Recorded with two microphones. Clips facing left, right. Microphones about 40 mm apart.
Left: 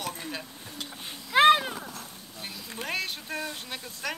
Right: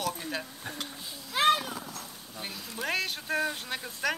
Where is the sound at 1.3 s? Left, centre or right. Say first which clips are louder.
Left 6 dB; left.